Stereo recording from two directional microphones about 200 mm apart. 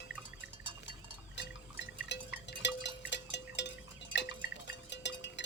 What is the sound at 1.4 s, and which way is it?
Drip, 60° left (ahead or behind).